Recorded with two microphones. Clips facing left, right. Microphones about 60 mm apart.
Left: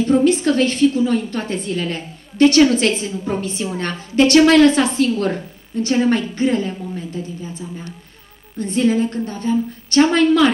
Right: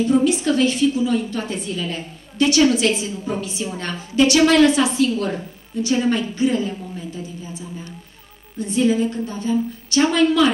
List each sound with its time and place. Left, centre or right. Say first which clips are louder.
0.1 s a woman's voice: left 5 dB; left
8.6 s a woman's voice: left 1 dB; left